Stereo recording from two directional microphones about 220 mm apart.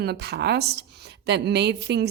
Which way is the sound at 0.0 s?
50° right (ahead or behind).